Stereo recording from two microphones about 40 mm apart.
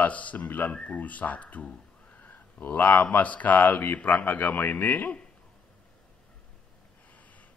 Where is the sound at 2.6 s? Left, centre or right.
Left.